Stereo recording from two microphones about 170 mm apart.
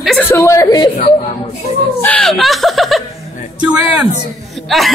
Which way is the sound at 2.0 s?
5° left (ahead or behind).